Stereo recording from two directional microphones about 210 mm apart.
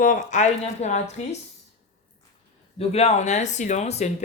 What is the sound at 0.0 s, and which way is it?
Speech, 35° left (ahead or behind).